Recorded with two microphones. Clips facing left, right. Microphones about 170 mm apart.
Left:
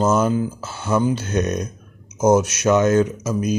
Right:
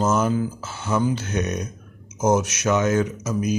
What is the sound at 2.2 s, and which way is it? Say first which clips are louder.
Speech: left 4 dB; 30° left (ahead or behind).